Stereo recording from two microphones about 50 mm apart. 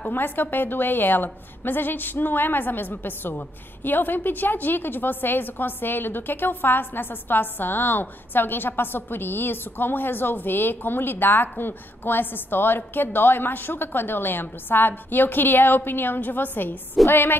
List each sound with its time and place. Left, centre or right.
0.1 s a woman's voice: left